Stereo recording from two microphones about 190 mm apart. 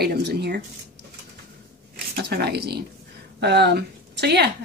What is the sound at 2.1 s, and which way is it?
Speech, 55° right (ahead or behind).